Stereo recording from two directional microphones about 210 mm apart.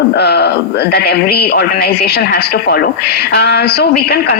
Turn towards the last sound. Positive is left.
turn(degrees=50)  # may be behind; listen again after turning